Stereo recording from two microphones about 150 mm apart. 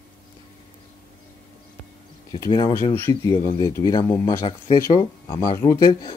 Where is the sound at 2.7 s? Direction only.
15° left (ahead or behind).